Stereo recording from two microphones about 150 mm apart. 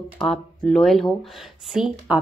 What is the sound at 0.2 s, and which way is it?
Speech, 5° left (ahead or behind).